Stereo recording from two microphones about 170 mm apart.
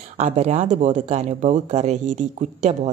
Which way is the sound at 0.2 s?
40° right (ahead or behind).